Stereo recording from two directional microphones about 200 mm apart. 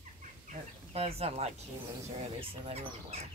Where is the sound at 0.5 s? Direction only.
30° right (ahead or behind).